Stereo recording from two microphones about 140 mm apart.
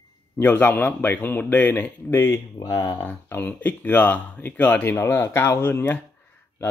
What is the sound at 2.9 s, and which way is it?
Speech, 15° left (ahead or behind).